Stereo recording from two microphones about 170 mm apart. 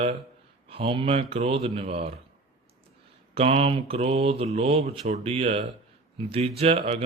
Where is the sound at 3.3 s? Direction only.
35° right (ahead or behind).